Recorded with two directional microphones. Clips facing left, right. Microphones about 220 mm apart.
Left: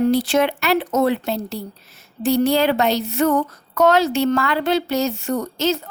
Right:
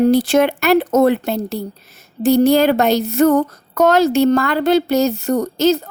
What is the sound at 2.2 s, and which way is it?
Speech, 45° right (ahead or behind).